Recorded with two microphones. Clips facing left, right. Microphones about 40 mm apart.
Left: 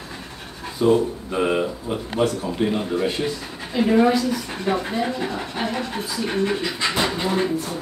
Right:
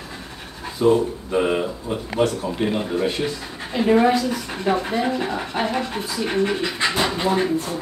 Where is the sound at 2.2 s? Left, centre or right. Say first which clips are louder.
Left 1 dB; centre.